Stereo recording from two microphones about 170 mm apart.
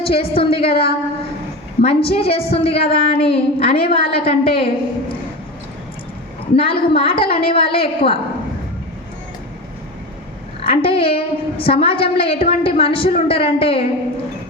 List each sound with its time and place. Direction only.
0.0 s a woman's voice: 35° left (ahead or behind)
1.8 s a woman's voice: 35° left (ahead or behind)
6.6 s a woman's voice: 35° left (ahead or behind)
10.6 s a woman's voice: 30° left (ahead or behind)